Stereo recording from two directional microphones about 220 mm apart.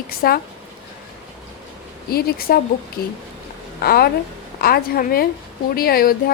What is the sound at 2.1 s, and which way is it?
A woman's voice, 45° left (ahead or behind).